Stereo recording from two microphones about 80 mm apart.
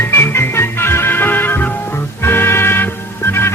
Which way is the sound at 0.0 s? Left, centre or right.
Left.